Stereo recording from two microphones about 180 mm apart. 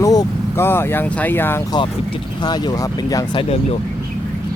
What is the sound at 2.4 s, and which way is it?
Speech, 25° left (ahead or behind).